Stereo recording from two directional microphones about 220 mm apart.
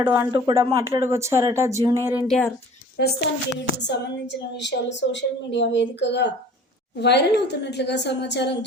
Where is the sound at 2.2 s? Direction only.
Centre (ahead or behind).